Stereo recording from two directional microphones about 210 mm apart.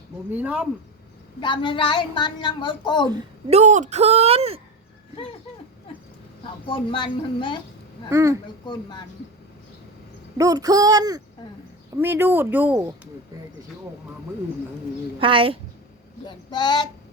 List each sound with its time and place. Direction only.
0.3 s speech: 10° right (ahead or behind)
1.4 s a woman's voice: 25° left (ahead or behind)
3.1 s a woman's voice: 20° right (ahead or behind)
3.6 s speech: 35° right (ahead or behind)
6.4 s a woman's voice: 25° left (ahead or behind)
8.1 s speech: 15° right (ahead or behind)
8.6 s a woman's voice: 20° left (ahead or behind)
10.3 s speech: 15° right (ahead or behind)
15.2 s speech: 25° right (ahead or behind)
16.2 s a woman's voice: 20° left (ahead or behind)